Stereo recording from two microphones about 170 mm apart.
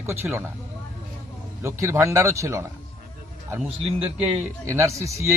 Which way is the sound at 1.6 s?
15° right (ahead or behind).